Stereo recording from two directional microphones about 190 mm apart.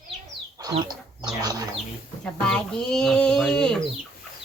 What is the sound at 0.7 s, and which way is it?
Speech, 20° right (ahead or behind).